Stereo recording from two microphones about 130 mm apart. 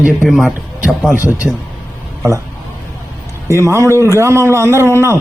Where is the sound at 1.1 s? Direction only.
15° right (ahead or behind).